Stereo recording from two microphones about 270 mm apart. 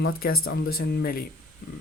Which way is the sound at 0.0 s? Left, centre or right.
Left.